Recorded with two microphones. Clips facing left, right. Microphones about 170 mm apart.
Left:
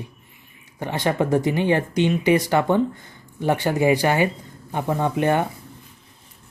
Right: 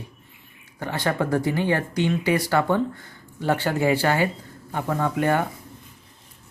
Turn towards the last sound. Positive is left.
turn(degrees=20)  # may be behind; listen again after turning